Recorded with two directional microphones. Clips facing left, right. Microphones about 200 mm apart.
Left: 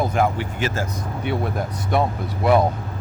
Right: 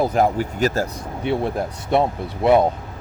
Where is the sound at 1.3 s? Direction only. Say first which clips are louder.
Right 3 dB; 30° right (ahead or behind).